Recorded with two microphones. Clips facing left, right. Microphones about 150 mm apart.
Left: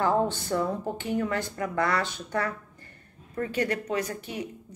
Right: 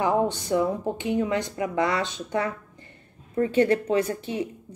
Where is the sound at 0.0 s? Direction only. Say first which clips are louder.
Right 2 dB; 15° right (ahead or behind).